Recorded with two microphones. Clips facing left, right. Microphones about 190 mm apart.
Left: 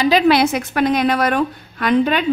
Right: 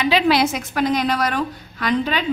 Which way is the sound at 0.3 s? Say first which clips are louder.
Left 3 dB; 60° left (ahead or behind).